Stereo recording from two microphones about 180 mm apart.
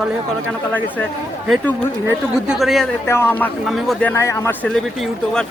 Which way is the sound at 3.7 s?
Centre (ahead or behind).